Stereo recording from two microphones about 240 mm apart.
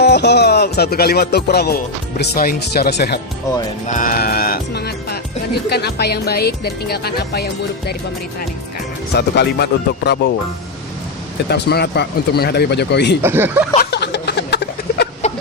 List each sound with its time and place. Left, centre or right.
0.0 s music: left
2.1 s speech: left
9.1 s speech: left
11.4 s speech: left
13.2 s speech: centre
13.7 s a sound: left
15.2 s a sound: left